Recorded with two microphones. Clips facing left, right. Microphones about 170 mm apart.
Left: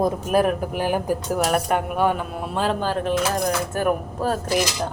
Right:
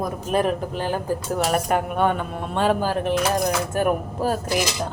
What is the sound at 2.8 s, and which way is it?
Speech, 10° right (ahead or behind).